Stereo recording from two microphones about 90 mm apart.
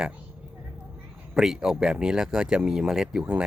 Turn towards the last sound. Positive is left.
turn(degrees=-10)  # may be behind; listen again after turning